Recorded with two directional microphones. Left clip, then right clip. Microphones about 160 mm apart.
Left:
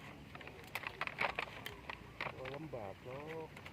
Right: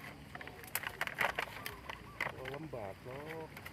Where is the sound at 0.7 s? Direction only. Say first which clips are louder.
Right 3 dB; 25° right (ahead or behind).